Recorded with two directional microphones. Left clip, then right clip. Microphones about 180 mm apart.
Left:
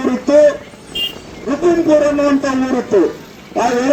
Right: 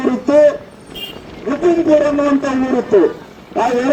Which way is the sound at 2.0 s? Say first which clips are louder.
Left 1 dB; 35° left (ahead or behind).